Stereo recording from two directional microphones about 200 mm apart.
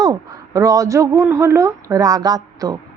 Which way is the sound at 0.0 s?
15° right (ahead or behind).